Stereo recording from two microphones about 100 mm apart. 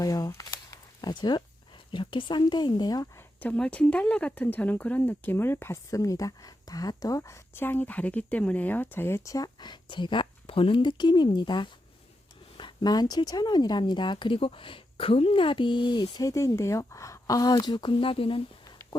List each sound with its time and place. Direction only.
0.0 s a sound: 35° left (ahead or behind)
1.1 s speech: 45° left (ahead or behind)
3.4 s speech: 15° left (ahead or behind); by 16.0 s 50° left (ahead or behind)
16.1 s speech: 35° left (ahead or behind); by 18.4 s 65° left (ahead or behind)